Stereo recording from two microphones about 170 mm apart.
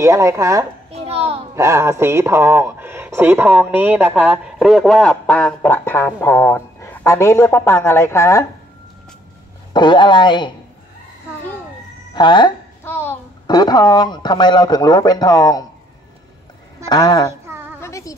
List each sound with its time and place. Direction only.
0.0 s speech: 15° right (ahead or behind)
0.9 s a child's voice: 35° right (ahead or behind)
1.5 s speech: 15° right (ahead or behind); by 8.5 s 15° left (ahead or behind)
9.8 s speech: 25° left (ahead or behind)
12.1 s speech: 25° left (ahead or behind)
12.8 s a sound: 15° left (ahead or behind)
13.5 s speech: 25° left (ahead or behind)
16.9 s speech: 25° left (ahead or behind)
17.3 s a sound: 15° right (ahead or behind)
17.7 s a sound: 15° left (ahead or behind)